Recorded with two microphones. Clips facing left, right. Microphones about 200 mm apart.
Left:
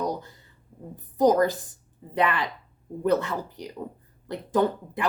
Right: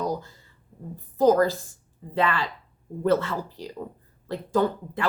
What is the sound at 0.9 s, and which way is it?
A woman's voice, 15° left (ahead or behind).